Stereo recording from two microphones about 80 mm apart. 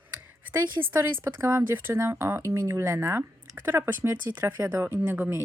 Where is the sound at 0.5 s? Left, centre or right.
Right.